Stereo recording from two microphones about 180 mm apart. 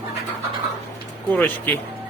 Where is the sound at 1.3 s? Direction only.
10° left (ahead or behind).